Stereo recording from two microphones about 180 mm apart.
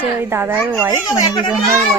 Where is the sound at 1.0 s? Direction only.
20° left (ahead or behind).